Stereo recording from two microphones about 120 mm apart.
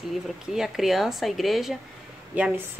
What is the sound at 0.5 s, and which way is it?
A woman's voice, centre (ahead or behind).